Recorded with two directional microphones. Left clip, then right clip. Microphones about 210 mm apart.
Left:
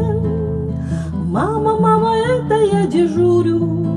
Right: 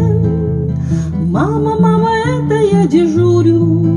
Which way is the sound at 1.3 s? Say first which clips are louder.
Right 1 dB; 50° right (ahead or behind).